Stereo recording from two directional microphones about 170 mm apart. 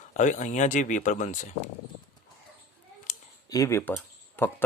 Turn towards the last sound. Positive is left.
turn(degrees=10)  # may be behind; listen again after turning